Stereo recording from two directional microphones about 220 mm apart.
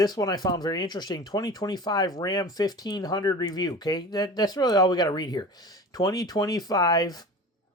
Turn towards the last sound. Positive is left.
turn(degrees=20)  # may be behind; listen again after turning